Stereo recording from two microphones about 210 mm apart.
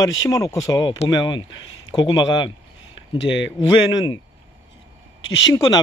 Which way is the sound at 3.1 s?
60° left (ahead or behind).